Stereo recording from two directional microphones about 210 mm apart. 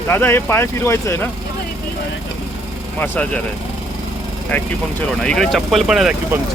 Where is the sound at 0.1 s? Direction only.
10° left (ahead or behind).